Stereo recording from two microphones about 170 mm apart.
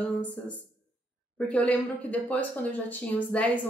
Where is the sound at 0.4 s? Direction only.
5° left (ahead or behind).